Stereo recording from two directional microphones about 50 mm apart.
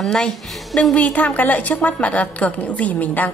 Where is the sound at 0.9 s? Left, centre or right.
Left.